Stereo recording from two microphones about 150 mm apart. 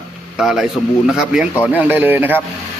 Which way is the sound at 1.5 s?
15° left (ahead or behind).